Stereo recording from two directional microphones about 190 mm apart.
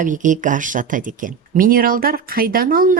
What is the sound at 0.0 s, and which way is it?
A woman's voice, 40° right (ahead or behind).